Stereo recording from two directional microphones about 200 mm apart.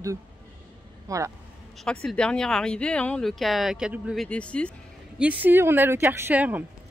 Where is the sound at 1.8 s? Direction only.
5° left (ahead or behind).